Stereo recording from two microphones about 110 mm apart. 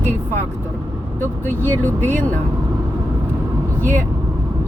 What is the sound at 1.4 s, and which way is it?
Speech, 20° left (ahead or behind).